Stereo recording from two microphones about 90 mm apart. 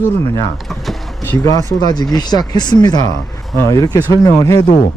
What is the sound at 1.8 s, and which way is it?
Speech, 50° left (ahead or behind).